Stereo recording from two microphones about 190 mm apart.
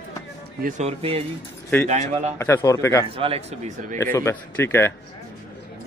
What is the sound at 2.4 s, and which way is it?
Speech, 15° left (ahead or behind).